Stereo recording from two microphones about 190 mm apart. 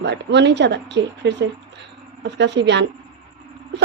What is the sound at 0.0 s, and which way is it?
A woman's voice, 65° right (ahead or behind).